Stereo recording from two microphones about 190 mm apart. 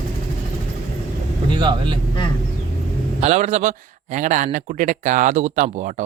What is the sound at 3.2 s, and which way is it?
Speech, 35° right (ahead or behind).